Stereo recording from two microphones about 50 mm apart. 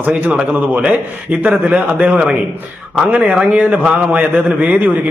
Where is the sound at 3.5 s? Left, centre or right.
Right.